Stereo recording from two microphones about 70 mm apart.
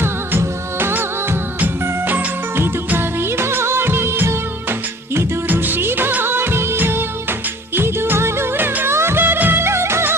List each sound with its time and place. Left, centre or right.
0.0 s music of bollywood: right